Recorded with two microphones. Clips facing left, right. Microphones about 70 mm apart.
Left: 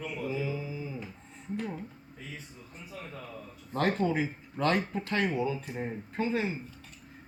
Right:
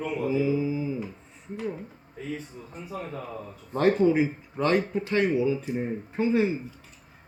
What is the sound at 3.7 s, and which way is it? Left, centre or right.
Speech, centre.